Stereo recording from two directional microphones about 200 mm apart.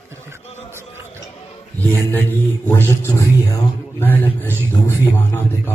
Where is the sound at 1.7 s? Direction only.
10° left (ahead or behind).